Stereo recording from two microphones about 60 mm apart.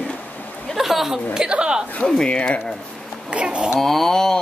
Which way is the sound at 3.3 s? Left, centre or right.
Centre.